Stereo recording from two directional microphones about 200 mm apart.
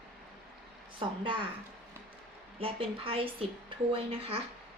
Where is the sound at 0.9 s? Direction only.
25° right (ahead or behind).